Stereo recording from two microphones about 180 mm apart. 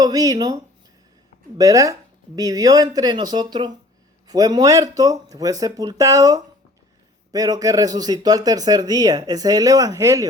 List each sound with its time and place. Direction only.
0.0 s speech: 20° right (ahead or behind)